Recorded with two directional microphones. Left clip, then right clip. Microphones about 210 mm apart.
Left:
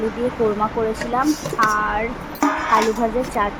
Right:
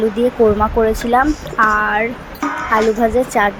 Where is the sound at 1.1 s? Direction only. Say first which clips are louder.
Right 4 dB; 20° right (ahead or behind).